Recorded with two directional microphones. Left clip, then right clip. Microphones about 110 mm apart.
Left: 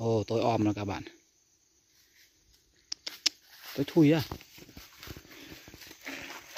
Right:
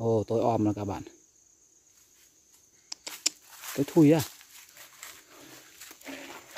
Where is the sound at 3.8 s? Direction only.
10° right (ahead or behind).